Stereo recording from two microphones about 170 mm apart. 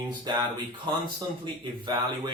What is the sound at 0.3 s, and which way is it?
Speech, 25° right (ahead or behind).